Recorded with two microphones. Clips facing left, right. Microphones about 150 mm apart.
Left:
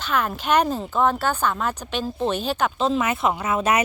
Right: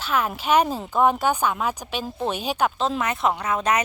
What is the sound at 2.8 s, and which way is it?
Speech, 5° left (ahead or behind).